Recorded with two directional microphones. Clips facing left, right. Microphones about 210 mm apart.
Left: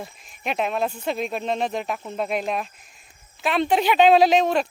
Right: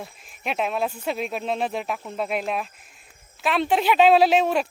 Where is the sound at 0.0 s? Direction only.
Centre (ahead or behind).